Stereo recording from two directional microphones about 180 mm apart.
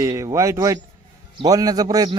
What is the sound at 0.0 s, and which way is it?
A man's voice, 20° right (ahead or behind).